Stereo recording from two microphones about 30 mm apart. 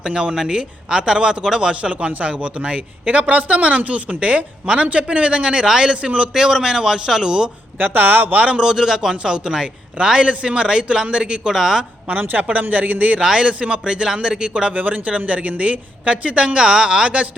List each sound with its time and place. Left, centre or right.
0.0 s a man's voice: right
1.8 s a woman's voice: right
3.1 s a woman's voice: right
6.3 s a man's voice: centre
7.8 s speech: right
8.5 s a man's voice: right
12.5 s speech: right
13.1 s a man's voice: right
13.5 s a woman's voice: right
14.8 s a man's voice: right
15.1 s a woman's voice: right